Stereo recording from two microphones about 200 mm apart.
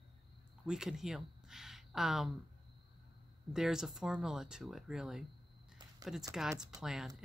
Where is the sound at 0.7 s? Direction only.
Centre (ahead or behind).